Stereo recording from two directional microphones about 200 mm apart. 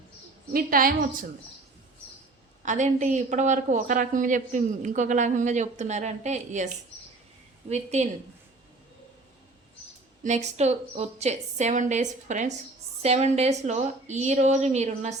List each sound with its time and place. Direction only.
0.5 s a woman's voice: 45° right (ahead or behind)
2.6 s a woman's voice: 35° right (ahead or behind)
7.7 s a woman's voice: 35° right (ahead or behind)
10.2 s a woman's voice: 35° right (ahead or behind)